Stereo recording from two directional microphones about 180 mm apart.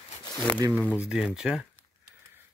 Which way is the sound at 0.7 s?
5° left (ahead or behind).